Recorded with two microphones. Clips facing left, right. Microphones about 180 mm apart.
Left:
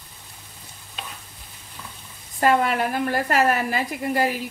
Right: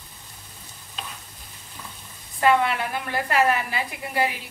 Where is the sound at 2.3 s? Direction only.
45° left (ahead or behind).